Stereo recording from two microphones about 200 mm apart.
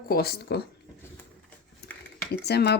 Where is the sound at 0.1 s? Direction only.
50° left (ahead or behind).